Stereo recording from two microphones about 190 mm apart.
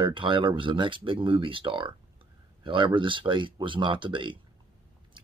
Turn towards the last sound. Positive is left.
turn(degrees=-25)  # may be behind; listen again after turning